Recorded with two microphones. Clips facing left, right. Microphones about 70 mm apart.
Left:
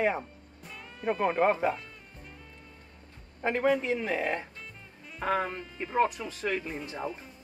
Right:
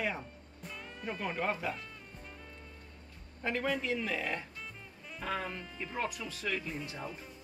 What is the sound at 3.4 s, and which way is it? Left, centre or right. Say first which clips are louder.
Speech: left 7 dB; left.